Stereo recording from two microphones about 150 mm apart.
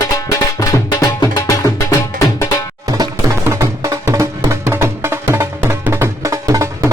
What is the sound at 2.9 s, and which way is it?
Music, 20° right (ahead or behind).